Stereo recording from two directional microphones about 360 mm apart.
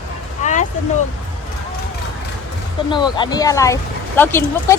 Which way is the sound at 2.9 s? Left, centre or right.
Centre.